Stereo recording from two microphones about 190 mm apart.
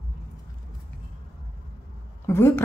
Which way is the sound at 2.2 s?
15° left (ahead or behind).